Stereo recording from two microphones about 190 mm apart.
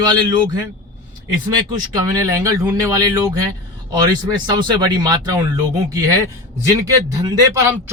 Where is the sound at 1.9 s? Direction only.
20° right (ahead or behind).